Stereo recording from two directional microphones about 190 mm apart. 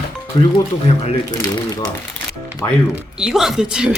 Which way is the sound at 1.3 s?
20° left (ahead or behind).